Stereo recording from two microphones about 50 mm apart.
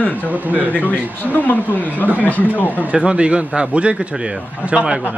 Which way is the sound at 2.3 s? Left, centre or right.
Left.